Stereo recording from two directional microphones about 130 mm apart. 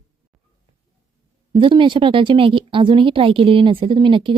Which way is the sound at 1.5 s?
40° right (ahead or behind).